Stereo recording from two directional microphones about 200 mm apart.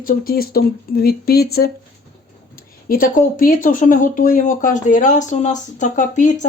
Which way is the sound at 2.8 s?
45° left (ahead or behind).